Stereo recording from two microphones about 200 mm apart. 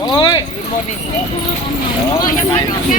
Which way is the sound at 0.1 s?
20° left (ahead or behind).